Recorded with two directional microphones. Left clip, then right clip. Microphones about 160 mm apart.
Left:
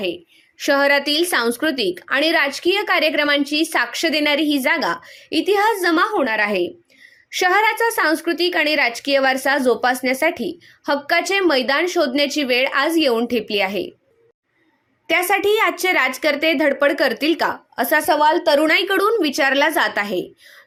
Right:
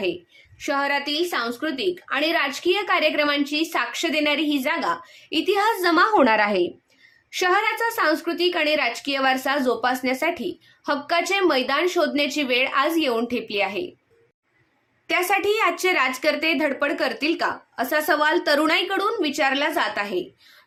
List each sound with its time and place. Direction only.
0.6 s a woman's voice: 50° left (ahead or behind); by 5.5 s 30° left (ahead or behind)
5.5 s a woman's voice: 20° left (ahead or behind)
6.1 s a woman's voice: 15° right (ahead or behind)
7.3 s a woman's voice: 30° left (ahead or behind)
15.0 s a woman's voice: 30° left (ahead or behind)
18.2 s a woman's voice: 10° left (ahead or behind)
18.7 s a woman's voice: 30° left (ahead or behind)